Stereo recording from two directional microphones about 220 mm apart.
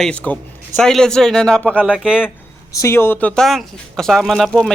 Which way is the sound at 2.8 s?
10° left (ahead or behind).